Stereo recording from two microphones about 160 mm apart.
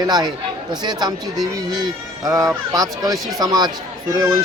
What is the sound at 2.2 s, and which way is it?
Speech, 20° right (ahead or behind).